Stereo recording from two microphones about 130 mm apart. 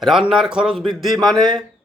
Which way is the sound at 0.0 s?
5° right (ahead or behind).